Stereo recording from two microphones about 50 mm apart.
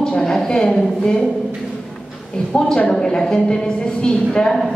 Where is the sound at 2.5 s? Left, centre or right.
Centre.